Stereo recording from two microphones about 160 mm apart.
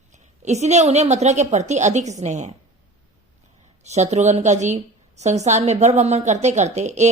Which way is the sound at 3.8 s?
45° right (ahead or behind).